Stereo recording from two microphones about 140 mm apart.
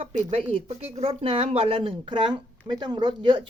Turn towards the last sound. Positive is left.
turn(degrees=-35)  # may be behind; listen again after turning